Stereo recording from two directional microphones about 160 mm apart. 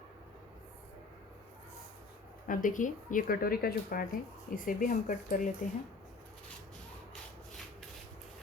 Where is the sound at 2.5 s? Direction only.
55° left (ahead or behind).